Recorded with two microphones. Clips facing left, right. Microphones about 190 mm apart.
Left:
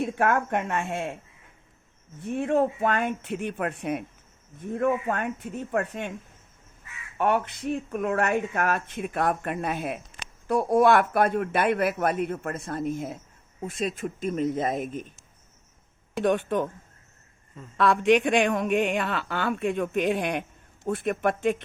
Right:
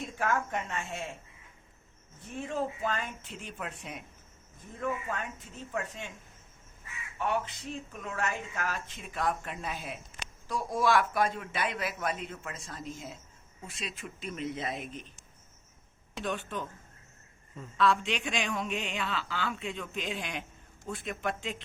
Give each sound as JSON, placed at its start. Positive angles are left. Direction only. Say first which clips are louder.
{"t": 0.0, "sound": "speech", "louder": "left 7 dB", "side_deg": 60}
{"t": 2.2, "sound": "speech", "louder": "left 10 dB", "side_deg": 65}
{"t": 7.2, "sound": "speech", "louder": "left 7 dB", "side_deg": 60}
{"t": 16.1, "sound": "speech", "louder": "left 11 dB", "side_deg": 60}
{"t": 17.7, "sound": "speech", "louder": "left 8 dB", "side_deg": 60}